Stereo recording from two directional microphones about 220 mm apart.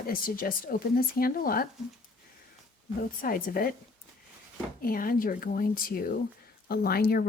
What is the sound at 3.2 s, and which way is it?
Speech, 40° left (ahead or behind).